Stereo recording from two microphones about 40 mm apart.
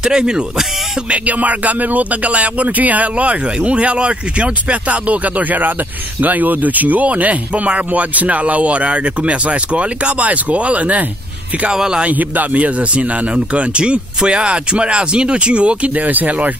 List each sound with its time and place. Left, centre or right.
0.0 s speech: centre
1.1 s speech: right
11.7 s speech: centre
12.1 s speech: right
15.9 s speech: right